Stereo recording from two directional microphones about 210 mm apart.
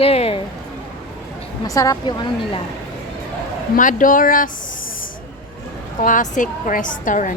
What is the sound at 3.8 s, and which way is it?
Speech, 40° left (ahead or behind).